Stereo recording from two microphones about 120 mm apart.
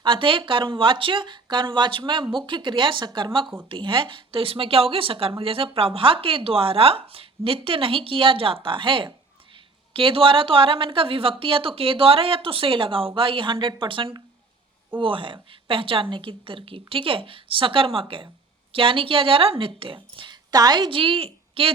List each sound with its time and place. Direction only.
0.0 s speech: 45° right (ahead or behind)